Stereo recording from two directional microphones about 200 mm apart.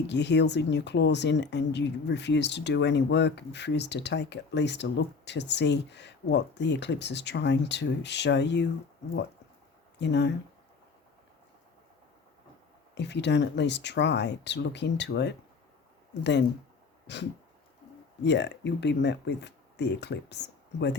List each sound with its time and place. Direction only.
0.1 s speech: 60° left (ahead or behind)
10.0 s speech: 60° left (ahead or behind)
12.9 s speech: 60° left (ahead or behind)
17.1 s speech: 60° left (ahead or behind)